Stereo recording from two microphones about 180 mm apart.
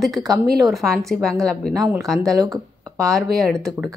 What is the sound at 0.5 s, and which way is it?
Speech, centre (ahead or behind).